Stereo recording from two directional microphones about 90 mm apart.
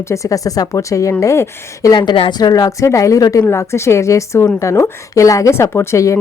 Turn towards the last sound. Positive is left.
turn(degrees=35)  # may be behind; listen again after turning